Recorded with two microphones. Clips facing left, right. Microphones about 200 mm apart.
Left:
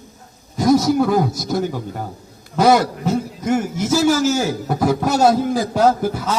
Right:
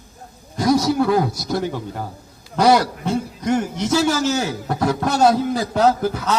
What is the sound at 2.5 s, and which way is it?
A man's voice, 5° left (ahead or behind).